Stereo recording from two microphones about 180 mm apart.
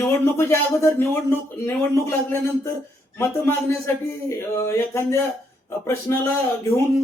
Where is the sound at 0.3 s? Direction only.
15° left (ahead or behind).